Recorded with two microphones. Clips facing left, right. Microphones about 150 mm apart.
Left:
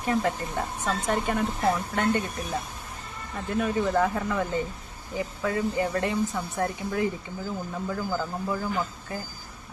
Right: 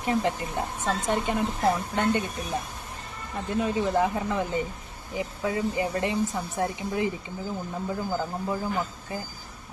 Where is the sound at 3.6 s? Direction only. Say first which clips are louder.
Even; 20° right (ahead or behind).